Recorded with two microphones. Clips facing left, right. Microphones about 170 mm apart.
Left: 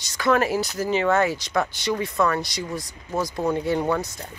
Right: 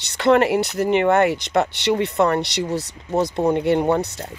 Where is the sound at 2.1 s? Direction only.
25° right (ahead or behind).